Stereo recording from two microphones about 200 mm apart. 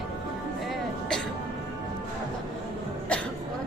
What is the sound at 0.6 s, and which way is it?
Music, centre (ahead or behind).